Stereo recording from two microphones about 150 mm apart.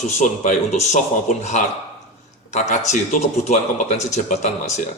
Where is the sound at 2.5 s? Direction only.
50° left (ahead or behind).